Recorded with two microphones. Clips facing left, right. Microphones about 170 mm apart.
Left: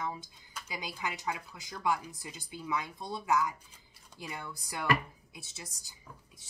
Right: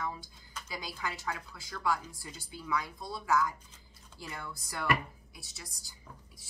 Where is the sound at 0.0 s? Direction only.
20° left (ahead or behind).